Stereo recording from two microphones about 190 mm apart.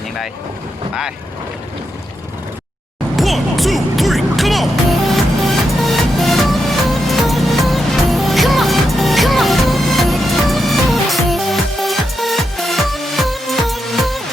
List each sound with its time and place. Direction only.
3.2 s music: centre (ahead or behind)